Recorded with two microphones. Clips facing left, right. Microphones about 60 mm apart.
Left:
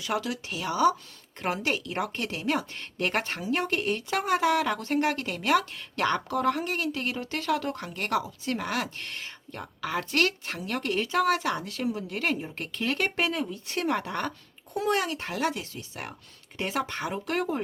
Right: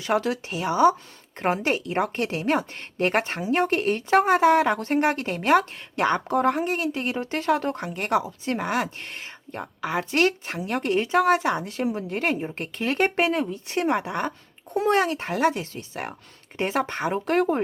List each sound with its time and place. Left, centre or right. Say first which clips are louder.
0.0 s speech: right 6 dB; right; by 14.3 s centre
14.7 s speech: right 6 dB; right